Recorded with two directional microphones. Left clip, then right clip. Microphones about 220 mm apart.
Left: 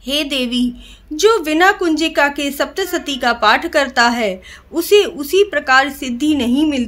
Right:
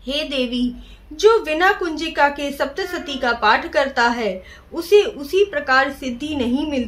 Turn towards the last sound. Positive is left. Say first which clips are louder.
# left 5 dB
turn(degrees=50)  # may be behind; listen again after turning